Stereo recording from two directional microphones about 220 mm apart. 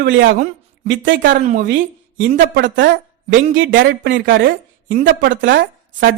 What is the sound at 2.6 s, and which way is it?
Speech, 55° right (ahead or behind).